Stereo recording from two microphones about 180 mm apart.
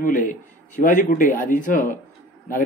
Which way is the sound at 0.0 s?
45° left (ahead or behind).